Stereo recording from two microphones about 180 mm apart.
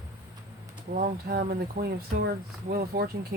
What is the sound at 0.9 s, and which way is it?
Speech, 55° right (ahead or behind).